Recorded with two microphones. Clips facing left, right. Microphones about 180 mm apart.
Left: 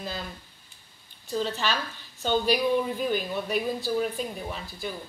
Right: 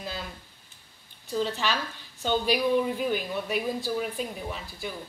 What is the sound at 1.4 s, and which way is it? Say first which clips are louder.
Speech: right 1 dB; 15° right (ahead or behind).